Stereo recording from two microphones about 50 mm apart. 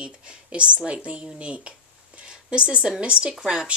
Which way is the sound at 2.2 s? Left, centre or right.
Right.